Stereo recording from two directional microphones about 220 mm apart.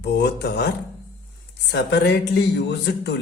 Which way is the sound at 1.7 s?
50° left (ahead or behind).